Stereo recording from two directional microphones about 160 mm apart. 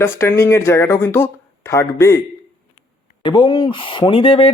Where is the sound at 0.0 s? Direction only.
15° left (ahead or behind).